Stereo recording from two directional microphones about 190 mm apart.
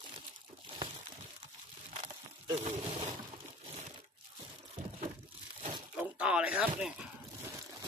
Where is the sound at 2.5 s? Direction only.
30° right (ahead or behind).